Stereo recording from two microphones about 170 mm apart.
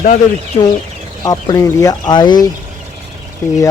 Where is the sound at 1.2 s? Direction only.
20° left (ahead or behind).